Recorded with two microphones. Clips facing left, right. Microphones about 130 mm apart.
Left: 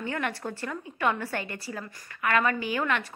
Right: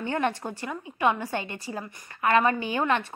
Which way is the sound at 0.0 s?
30° right (ahead or behind).